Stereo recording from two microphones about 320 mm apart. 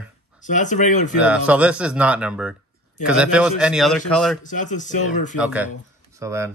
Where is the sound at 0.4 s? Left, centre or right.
Left.